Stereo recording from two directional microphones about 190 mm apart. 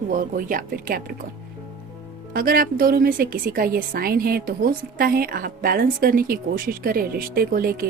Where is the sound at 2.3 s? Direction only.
50° right (ahead or behind).